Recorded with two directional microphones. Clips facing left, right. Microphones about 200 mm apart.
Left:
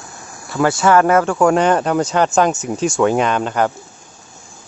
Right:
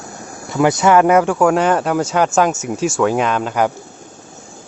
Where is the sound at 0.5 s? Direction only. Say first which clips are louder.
Right 1 dB; 20° right (ahead or behind).